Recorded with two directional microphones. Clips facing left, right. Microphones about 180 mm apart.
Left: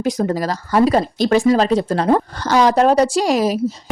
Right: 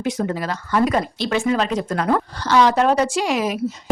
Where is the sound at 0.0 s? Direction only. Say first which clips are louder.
Left 4 dB; 40° left (ahead or behind).